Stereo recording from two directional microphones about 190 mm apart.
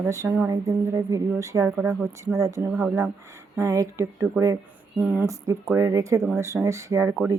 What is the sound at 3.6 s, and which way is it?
Speech, 15° right (ahead or behind).